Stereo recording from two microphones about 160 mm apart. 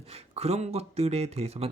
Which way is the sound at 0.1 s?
40° right (ahead or behind).